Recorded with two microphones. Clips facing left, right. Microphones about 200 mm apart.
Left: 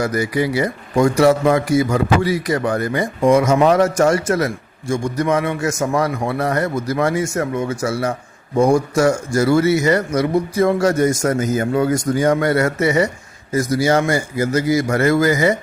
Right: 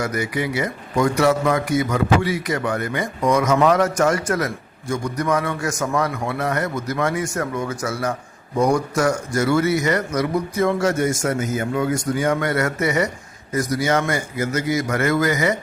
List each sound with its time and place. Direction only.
0.0 s a man's voice: 35° left (ahead or behind)